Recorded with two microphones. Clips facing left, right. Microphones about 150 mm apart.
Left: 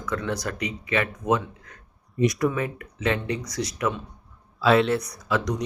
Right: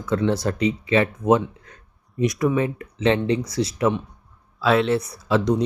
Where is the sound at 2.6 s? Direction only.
30° right (ahead or behind).